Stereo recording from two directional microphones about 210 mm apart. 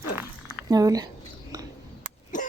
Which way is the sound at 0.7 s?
15° right (ahead or behind).